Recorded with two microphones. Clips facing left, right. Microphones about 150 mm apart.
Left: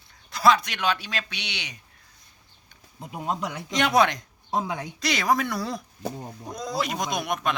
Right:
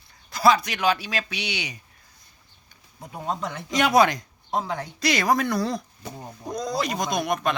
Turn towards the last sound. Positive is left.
turn(degrees=0)  # may be behind; listen again after turning